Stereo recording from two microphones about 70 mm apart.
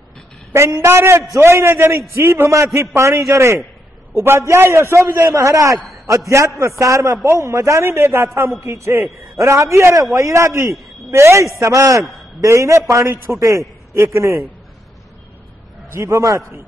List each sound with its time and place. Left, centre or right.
0.5 s a man's voice: right
5.3 s a man's voice: right
15.9 s a man's voice: right